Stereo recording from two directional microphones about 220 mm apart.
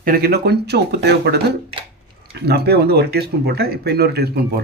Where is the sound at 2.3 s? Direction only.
45° right (ahead or behind).